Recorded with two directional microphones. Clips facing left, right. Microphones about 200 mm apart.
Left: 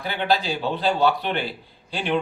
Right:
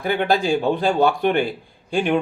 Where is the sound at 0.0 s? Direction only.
50° right (ahead or behind).